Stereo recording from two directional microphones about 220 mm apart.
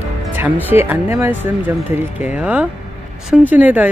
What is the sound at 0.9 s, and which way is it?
Speech, 10° right (ahead or behind).